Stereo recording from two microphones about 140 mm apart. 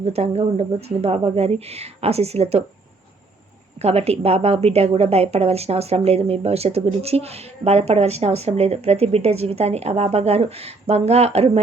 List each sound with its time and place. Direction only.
0.0 s a woman's voice: 50° right (ahead or behind)
3.8 s a woman's voice: 45° right (ahead or behind)